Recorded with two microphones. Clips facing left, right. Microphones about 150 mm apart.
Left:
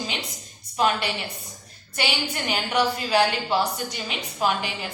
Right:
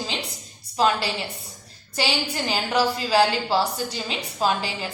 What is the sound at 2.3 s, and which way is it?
A woman's voice, 35° right (ahead or behind).